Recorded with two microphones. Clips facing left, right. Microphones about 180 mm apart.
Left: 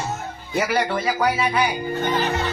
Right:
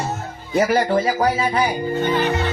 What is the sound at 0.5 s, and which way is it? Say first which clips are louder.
Speech: right 5 dB; 30° right (ahead or behind).